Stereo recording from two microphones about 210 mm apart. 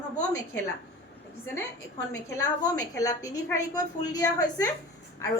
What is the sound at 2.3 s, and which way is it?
A woman's voice, 15° left (ahead or behind).